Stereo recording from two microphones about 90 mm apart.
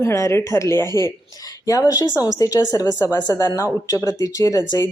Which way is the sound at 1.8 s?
45° left (ahead or behind).